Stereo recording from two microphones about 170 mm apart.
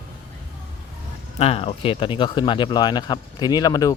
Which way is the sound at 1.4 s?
35° left (ahead or behind).